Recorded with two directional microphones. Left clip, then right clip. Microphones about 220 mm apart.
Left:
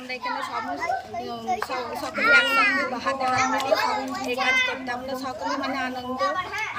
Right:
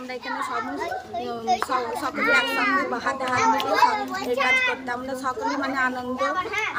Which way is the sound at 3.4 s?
35° right (ahead or behind).